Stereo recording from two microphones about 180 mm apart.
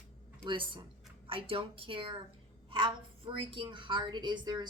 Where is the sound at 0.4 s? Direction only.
30° right (ahead or behind).